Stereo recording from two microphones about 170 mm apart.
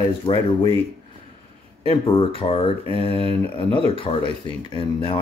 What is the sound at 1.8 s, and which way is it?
Speech, 30° left (ahead or behind).